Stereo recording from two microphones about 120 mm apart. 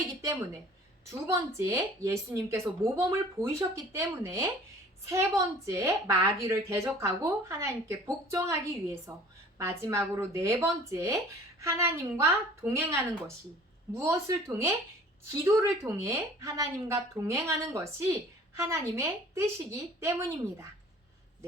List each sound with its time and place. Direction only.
1.5 s a woman's voice: 25° right (ahead or behind)